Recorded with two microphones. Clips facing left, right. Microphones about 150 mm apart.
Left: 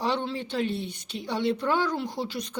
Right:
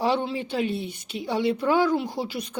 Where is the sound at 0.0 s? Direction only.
10° right (ahead or behind).